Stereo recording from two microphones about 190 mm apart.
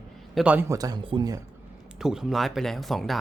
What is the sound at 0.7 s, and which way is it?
Speech, 20° right (ahead or behind).